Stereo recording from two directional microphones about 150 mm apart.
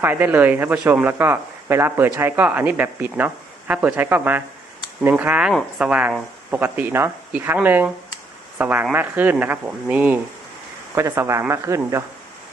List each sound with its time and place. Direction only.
0.0 s speech: 15° right (ahead or behind)